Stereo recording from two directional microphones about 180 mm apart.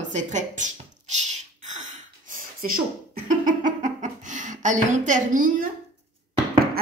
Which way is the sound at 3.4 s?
45° right (ahead or behind).